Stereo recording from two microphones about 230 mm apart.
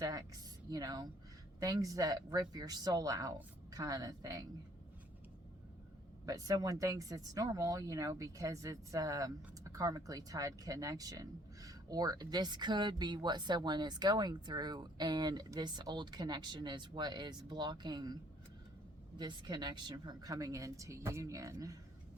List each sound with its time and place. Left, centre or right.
0.0 s speech: centre
6.2 s speech: centre
19.2 s speech: centre